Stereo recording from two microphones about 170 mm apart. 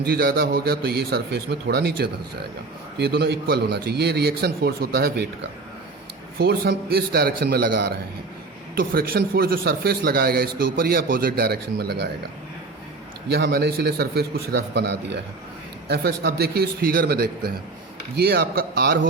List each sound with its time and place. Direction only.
0.0 s a man's voice: 65° right (ahead or behind)
13.2 s a man's voice: 70° right (ahead or behind)